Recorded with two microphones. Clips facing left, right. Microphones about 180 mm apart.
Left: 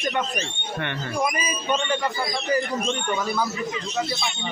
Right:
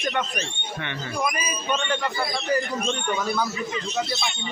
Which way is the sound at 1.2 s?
20° left (ahead or behind).